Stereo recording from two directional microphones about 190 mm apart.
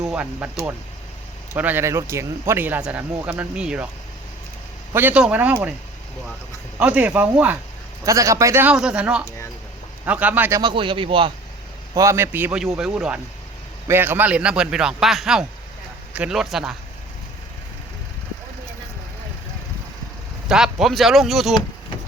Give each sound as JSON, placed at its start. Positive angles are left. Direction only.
{"t": 0.0, "sound": "speech", "side_deg": -5}
{"t": 1.5, "sound": "speech", "side_deg": -10}
{"t": 4.9, "sound": "speech", "side_deg": -10}
{"t": 6.7, "sound": "speech", "side_deg": -5}
{"t": 10.6, "sound": "speech", "side_deg": -25}
{"t": 11.9, "sound": "a man's voice", "side_deg": -15}
{"t": 20.5, "sound": "a man's voice", "side_deg": 0}